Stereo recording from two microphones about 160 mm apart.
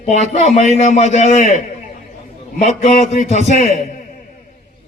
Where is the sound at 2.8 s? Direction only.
50° left (ahead or behind).